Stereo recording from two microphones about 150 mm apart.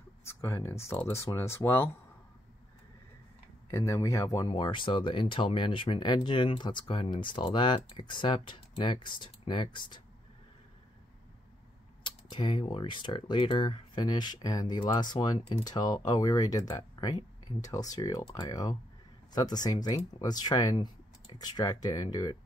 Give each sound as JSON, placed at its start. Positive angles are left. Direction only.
{"t": 0.2, "sound": "speech", "side_deg": 20}
{"t": 3.7, "sound": "speech", "side_deg": 20}
{"t": 12.0, "sound": "speech", "side_deg": 35}